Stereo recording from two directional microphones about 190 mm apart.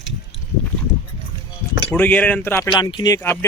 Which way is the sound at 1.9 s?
10° left (ahead or behind).